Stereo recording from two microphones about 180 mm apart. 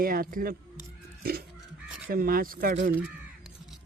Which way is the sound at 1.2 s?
55° right (ahead or behind).